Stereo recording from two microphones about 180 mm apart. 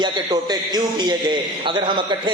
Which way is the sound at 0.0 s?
25° right (ahead or behind).